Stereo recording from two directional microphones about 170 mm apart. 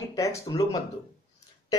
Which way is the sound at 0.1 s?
20° left (ahead or behind).